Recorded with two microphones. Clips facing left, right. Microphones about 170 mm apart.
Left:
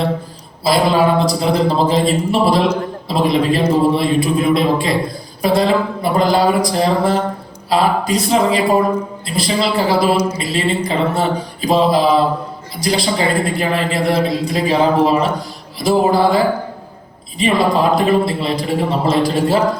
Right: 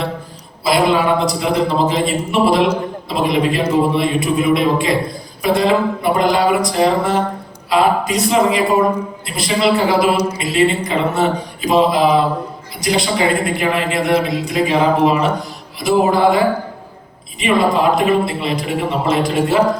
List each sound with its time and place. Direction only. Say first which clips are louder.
0.6 s a woman's voice: left 1 dB; 35° left (ahead or behind)